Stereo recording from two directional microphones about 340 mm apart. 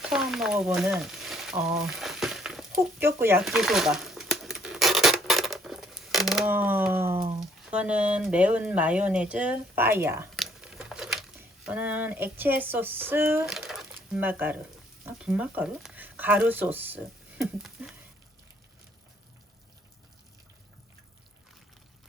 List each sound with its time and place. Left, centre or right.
0.1 s frying: centre
3.0 s a sound: centre
7.3 s speech: centre